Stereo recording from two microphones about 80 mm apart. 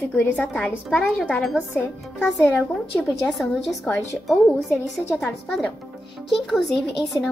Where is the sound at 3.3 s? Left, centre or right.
Centre.